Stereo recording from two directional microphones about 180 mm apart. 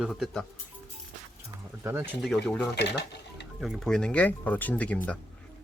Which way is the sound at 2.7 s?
70° left (ahead or behind).